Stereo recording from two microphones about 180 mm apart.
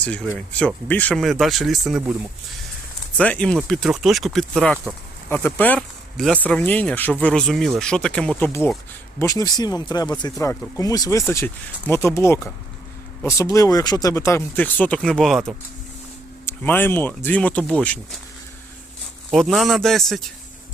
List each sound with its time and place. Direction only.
0.0 s speech: 5° left (ahead or behind)
3.2 s speech: 5° left (ahead or behind)
16.5 s speech: 10° left (ahead or behind)
19.3 s speech: centre (ahead or behind)